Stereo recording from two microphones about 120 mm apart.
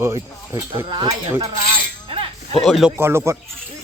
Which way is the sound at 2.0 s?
50° right (ahead or behind).